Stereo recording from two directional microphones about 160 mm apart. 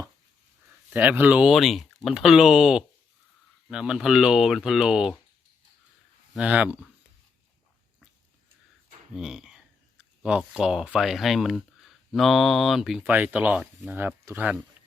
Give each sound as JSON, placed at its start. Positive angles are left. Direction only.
{"t": 0.9, "sound": "speech", "side_deg": -10}
{"t": 6.3, "sound": "speech", "side_deg": -10}
{"t": 9.1, "sound": "speech", "side_deg": -5}